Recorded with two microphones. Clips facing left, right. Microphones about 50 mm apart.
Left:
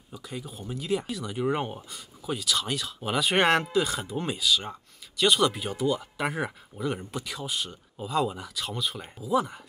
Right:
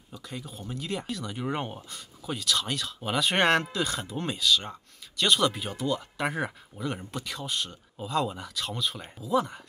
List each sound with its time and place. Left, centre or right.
0.1 s speech: centre